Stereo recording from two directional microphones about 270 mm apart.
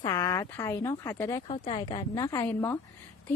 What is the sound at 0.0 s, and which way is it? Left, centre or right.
Speech, centre.